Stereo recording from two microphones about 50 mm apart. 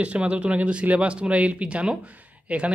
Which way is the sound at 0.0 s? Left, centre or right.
Right.